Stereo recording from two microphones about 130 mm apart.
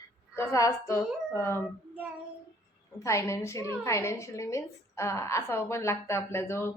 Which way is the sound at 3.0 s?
25° left (ahead or behind).